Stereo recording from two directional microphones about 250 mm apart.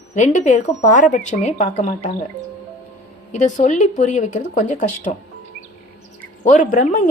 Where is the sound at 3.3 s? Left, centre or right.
Left.